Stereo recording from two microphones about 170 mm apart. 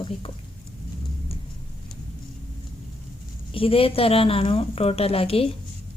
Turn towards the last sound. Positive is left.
turn(degrees=35)  # may be behind; listen again after turning